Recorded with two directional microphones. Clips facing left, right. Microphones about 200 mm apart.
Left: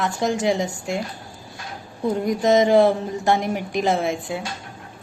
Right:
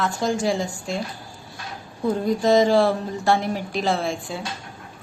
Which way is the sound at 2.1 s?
20° left (ahead or behind).